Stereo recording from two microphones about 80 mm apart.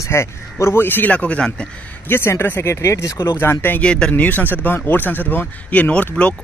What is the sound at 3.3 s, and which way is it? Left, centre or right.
Speech, left.